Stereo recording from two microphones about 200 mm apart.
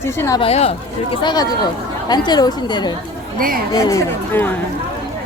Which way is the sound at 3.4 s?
45° right (ahead or behind).